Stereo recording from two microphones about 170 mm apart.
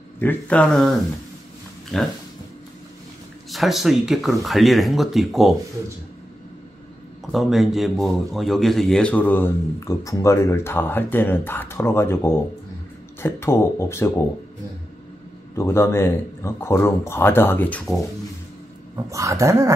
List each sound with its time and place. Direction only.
0.2 s speech: 10° left (ahead or behind)
3.4 s speech: centre (ahead or behind)
7.3 s speech: centre (ahead or behind); by 14.2 s 15° left (ahead or behind)
15.5 s speech: 15° left (ahead or behind)
19.0 s speech: 20° right (ahead or behind)